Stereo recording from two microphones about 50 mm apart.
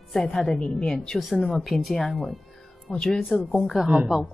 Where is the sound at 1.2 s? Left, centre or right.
Centre.